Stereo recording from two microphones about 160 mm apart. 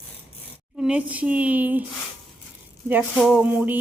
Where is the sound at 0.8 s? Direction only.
5° right (ahead or behind).